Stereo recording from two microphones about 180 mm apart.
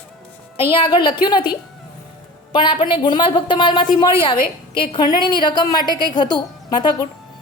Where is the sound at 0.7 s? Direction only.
25° left (ahead or behind).